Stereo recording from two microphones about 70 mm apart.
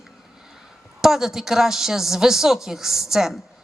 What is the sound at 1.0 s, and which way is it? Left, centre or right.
A woman's voice, centre.